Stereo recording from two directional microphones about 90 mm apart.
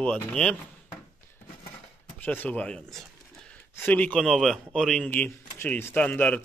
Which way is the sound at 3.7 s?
20° left (ahead or behind).